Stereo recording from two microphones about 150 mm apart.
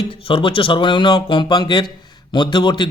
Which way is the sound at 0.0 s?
35° left (ahead or behind).